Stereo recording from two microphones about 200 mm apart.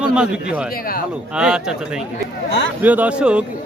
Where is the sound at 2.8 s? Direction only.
10° right (ahead or behind).